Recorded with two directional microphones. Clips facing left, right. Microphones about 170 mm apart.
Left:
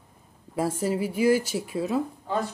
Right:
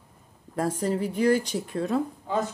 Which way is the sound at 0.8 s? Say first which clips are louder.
Even; 5° left (ahead or behind).